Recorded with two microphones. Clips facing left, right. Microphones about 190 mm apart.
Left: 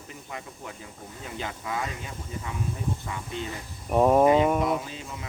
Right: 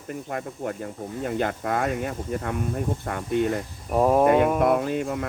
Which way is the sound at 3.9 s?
Centre (ahead or behind).